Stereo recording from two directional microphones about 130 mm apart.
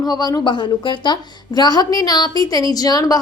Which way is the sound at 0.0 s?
30° left (ahead or behind).